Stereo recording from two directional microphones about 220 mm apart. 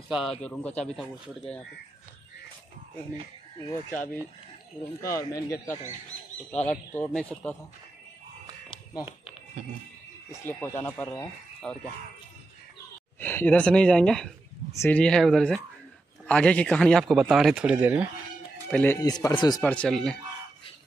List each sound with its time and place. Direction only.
0.1 s speech: centre (ahead or behind)
5.0 s speech: 15° left (ahead or behind)
8.6 s a sound: 25° left (ahead or behind)
10.3 s speech: 10° left (ahead or behind)
13.2 s speech: 10° left (ahead or behind); by 18.0 s 5° right (ahead or behind)
18.7 s speech: 10° left (ahead or behind)
19.6 s speech: 5° left (ahead or behind)